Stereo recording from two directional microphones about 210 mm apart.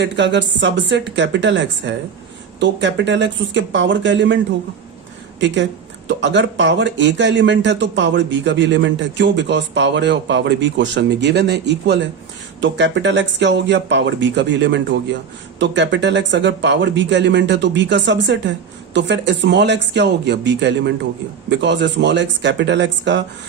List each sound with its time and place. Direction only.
0.0 s speech: 55° right (ahead or behind)
6.1 s speech: 55° right (ahead or behind)